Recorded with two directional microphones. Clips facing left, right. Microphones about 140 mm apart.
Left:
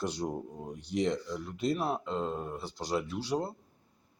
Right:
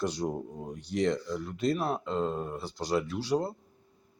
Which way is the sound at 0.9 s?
15° left (ahead or behind).